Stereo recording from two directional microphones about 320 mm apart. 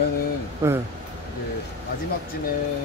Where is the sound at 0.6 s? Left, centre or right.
Centre.